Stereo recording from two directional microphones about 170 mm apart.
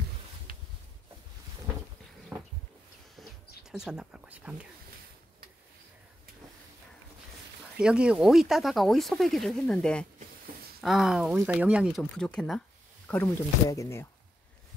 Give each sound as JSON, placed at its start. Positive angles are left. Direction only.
{"t": 2.3, "sound": "a sound", "side_deg": -10}
{"t": 3.8, "sound": "speech", "side_deg": -5}
{"t": 7.7, "sound": "speech", "side_deg": -5}
{"t": 12.0, "sound": "speech", "side_deg": 5}
{"t": 13.1, "sound": "speech", "side_deg": 15}